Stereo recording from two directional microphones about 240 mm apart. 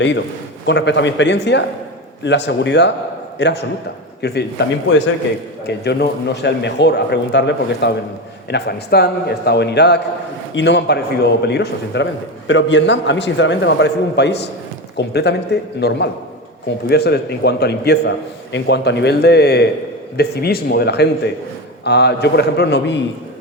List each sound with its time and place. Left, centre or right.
0.6 s speech: left